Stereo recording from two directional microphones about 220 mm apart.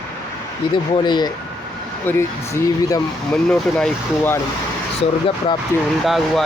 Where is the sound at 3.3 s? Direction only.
5° left (ahead or behind).